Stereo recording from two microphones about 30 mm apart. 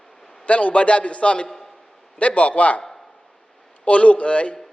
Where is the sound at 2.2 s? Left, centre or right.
Left.